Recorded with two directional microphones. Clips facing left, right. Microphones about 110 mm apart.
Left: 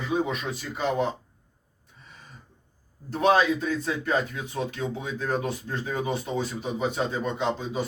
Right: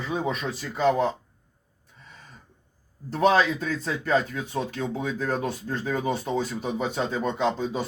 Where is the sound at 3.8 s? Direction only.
40° right (ahead or behind).